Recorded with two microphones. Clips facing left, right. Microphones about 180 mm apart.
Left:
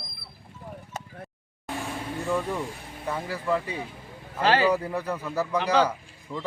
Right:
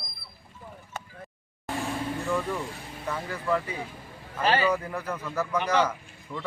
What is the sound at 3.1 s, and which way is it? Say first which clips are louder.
Speech: left 1 dB; 15° left (ahead or behind).